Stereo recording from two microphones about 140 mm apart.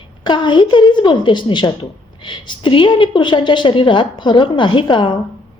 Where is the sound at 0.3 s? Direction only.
35° left (ahead or behind).